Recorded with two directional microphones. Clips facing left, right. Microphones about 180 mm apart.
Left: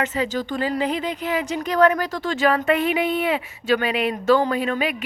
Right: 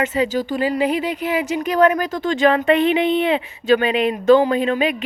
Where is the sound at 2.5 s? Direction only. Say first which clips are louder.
Right 4 dB; 25° right (ahead or behind).